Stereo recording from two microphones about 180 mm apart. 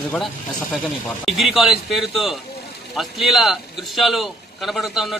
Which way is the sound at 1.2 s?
Centre (ahead or behind).